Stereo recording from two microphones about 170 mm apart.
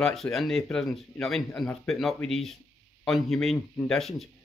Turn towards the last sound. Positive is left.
turn(degrees=0)  # may be behind; listen again after turning